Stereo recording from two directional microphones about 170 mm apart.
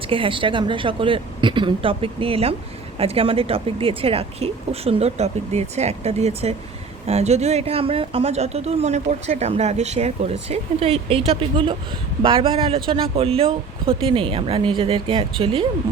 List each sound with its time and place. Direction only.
0.1 s speech: 30° right (ahead or behind)